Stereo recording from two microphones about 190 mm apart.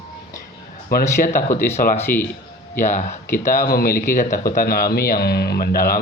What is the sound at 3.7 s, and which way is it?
Speech, 50° left (ahead or behind).